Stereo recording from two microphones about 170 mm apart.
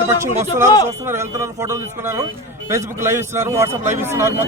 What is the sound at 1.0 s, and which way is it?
A man's voice, 15° right (ahead or behind).